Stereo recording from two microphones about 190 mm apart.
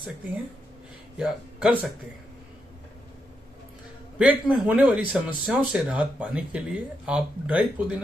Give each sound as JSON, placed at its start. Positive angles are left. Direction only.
{"t": 1.1, "sound": "speech", "side_deg": -5}
{"t": 4.2, "sound": "speech", "side_deg": -5}